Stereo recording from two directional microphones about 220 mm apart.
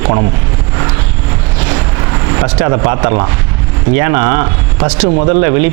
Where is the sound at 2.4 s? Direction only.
20° right (ahead or behind).